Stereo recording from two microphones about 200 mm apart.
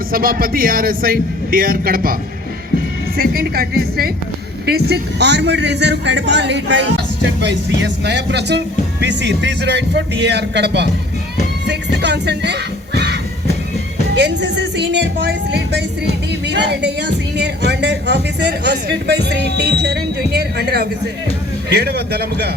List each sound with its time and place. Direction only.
0.1 s a man's voice: 45° right (ahead or behind)
3.2 s a man's voice: 50° right (ahead or behind)
11.6 s music: 60° right (ahead or behind)
14.2 s a man's voice: 60° right (ahead or behind)